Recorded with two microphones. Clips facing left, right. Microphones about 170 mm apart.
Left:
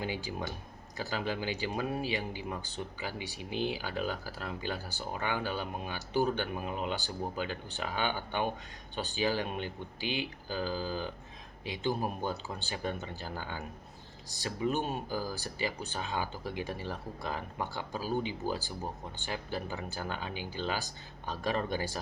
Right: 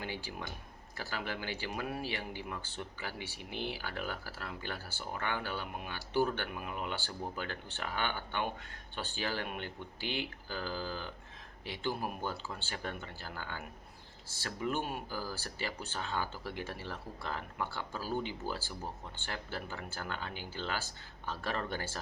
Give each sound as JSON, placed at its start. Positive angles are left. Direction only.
{"t": 0.0, "sound": "speech", "side_deg": 15}
{"t": 6.5, "sound": "speech", "side_deg": 25}